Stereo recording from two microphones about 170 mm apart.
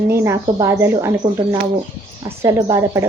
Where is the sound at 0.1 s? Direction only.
15° right (ahead or behind).